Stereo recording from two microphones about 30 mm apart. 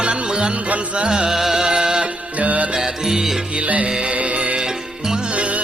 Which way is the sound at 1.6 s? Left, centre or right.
Right.